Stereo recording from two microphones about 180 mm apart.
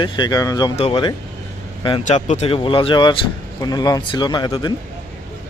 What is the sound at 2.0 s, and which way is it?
Speech, 40° left (ahead or behind).